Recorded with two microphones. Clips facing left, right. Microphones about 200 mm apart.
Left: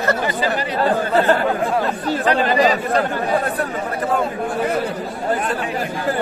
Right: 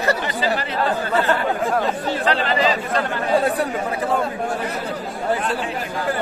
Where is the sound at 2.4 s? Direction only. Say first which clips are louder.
Left 4 dB; 45° left (ahead or behind).